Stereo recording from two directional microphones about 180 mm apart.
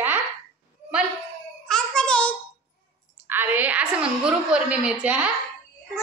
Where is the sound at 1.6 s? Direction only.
5° left (ahead or behind).